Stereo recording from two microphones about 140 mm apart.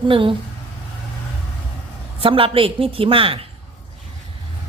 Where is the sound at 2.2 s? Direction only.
40° right (ahead or behind).